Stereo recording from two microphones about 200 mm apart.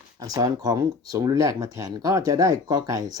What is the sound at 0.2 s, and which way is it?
Speech, 20° right (ahead or behind).